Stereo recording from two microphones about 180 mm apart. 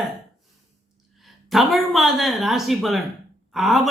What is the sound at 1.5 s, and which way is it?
Speech, centre (ahead or behind).